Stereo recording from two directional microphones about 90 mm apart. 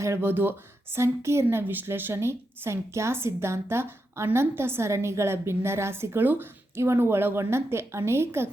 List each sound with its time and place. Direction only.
0.0 s a woman's voice: 30° right (ahead or behind)